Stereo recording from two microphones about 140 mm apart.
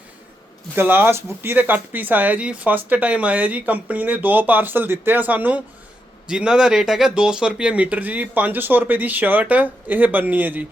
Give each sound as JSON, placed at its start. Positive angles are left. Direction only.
{"t": 0.8, "sound": "speech", "side_deg": -15}